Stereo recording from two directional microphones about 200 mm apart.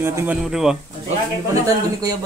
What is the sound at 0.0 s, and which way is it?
Speech, 10° right (ahead or behind).